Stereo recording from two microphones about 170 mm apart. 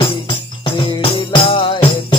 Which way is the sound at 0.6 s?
30° left (ahead or behind).